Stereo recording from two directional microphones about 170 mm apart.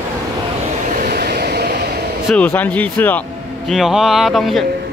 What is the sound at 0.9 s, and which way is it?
Vehicle, 55° right (ahead or behind).